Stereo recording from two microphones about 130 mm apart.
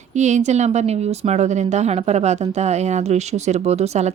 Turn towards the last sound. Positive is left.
turn(degrees=-55)  # may be behind; listen again after turning